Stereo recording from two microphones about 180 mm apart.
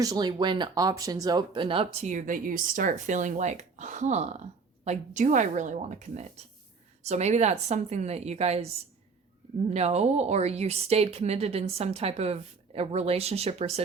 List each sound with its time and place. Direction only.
0.0 s speech: 20° right (ahead or behind)